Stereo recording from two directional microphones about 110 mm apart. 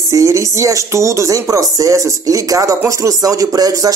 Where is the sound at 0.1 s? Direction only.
30° right (ahead or behind).